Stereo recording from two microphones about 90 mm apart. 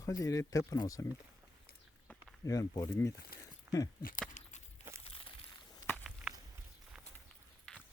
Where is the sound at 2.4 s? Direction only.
35° left (ahead or behind).